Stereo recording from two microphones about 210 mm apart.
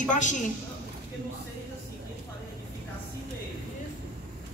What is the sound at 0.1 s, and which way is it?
Speech, 35° left (ahead or behind).